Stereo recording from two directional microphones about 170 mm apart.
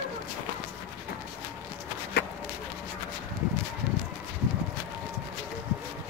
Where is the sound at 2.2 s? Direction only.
70° left (ahead or behind).